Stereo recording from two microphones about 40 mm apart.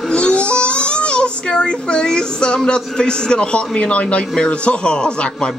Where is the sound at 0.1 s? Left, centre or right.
Left.